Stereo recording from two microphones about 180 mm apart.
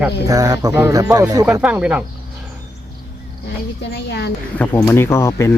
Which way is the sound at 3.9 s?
70° left (ahead or behind).